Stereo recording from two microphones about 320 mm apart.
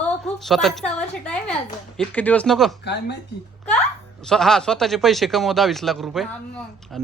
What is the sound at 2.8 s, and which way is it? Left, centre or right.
Speech, left.